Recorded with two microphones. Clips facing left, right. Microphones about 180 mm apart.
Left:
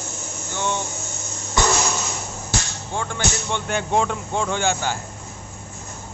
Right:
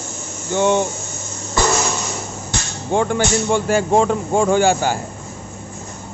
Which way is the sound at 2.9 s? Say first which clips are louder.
Right 11 dB; 65° right (ahead or behind).